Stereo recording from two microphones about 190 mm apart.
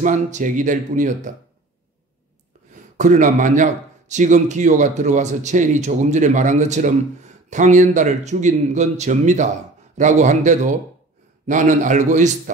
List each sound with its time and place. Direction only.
0.0 s a man's voice: 40° right (ahead or behind)
2.7 s a man's voice: 40° right (ahead or behind)